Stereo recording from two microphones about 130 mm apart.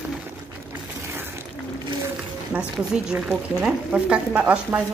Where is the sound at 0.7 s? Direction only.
15° right (ahead or behind).